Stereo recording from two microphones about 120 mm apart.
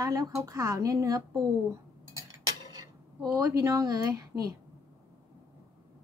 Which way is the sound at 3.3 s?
35° right (ahead or behind).